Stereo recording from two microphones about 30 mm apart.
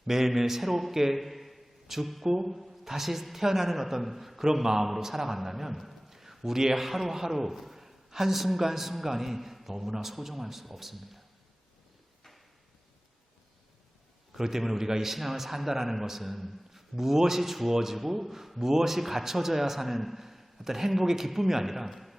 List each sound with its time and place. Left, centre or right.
0.1 s a man's voice: centre
1.2 s a sound: centre
2.2 s a man's voice: centre
4.6 s a man's voice: centre
14.3 s a man's voice: centre